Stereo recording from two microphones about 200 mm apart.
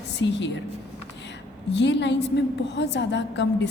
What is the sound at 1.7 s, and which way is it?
A woman's voice, 60° left (ahead or behind).